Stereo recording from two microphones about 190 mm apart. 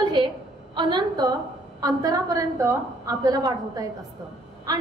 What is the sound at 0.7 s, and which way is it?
A woman's voice, 25° right (ahead or behind).